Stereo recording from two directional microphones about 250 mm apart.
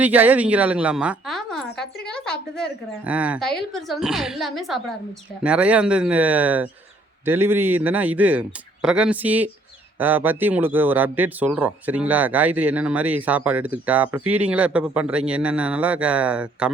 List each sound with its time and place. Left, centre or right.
0.0 s a woman's voice: centre